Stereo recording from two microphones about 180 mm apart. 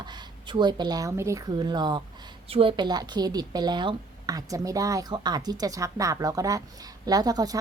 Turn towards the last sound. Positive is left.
turn(degrees=-20)  # may be behind; listen again after turning